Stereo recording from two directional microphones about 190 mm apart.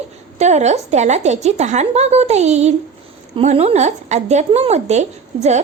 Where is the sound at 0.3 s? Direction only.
35° right (ahead or behind).